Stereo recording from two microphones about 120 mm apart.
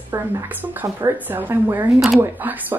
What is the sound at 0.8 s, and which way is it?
Speech, 20° right (ahead or behind).